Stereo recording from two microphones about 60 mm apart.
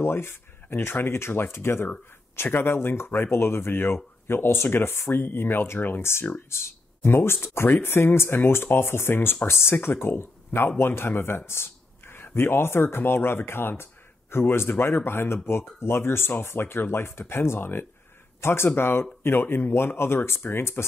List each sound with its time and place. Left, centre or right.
0.0 s speech: left